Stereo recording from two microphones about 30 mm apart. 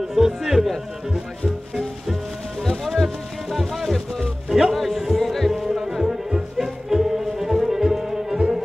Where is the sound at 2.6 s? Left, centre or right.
Centre.